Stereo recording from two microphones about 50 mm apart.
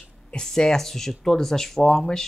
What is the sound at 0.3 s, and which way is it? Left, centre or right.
Speech, centre.